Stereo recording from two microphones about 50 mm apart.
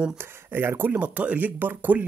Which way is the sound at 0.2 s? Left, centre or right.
Right.